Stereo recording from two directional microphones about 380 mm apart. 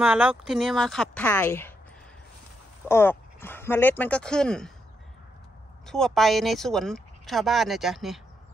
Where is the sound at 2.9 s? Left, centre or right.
Centre.